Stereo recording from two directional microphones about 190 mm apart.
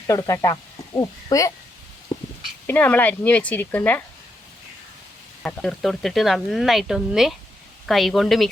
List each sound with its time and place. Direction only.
0.1 s speech: 15° left (ahead or behind)
2.1 s a sound: 20° left (ahead or behind)
2.6 s speech: 10° left (ahead or behind)
5.4 s speech: 5° left (ahead or behind)